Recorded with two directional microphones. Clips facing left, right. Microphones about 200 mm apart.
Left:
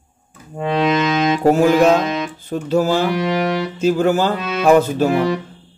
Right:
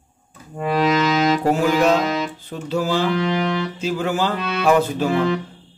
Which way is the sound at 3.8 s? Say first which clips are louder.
Left 8 dB; 45° left (ahead or behind).